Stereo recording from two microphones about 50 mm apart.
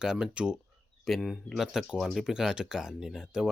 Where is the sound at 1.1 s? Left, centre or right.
Centre.